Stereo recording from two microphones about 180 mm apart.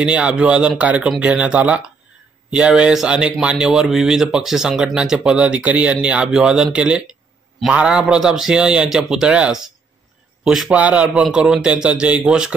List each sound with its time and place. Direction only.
0.0 s speech: 5° right (ahead or behind)